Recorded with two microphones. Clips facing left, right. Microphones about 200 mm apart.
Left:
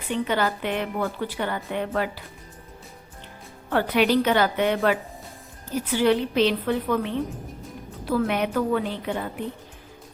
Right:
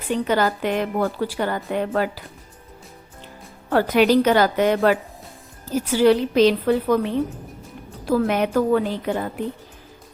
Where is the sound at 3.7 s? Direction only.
40° right (ahead or behind).